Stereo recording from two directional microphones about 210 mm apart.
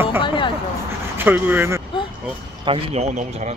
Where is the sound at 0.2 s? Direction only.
25° left (ahead or behind).